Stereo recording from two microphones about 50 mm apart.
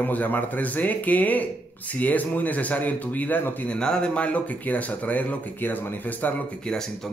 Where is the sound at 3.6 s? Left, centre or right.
Centre; by 6.3 s left.